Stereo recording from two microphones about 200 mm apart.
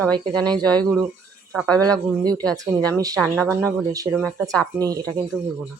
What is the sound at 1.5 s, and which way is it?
Speech, 5° left (ahead or behind).